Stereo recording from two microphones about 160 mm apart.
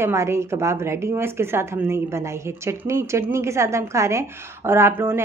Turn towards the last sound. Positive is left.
turn(degrees=-15)  # may be behind; listen again after turning